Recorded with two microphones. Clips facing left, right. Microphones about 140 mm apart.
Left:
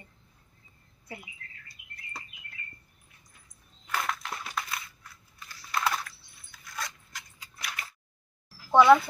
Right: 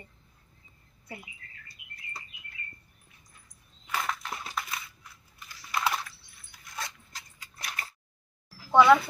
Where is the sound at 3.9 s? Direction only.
Centre (ahead or behind).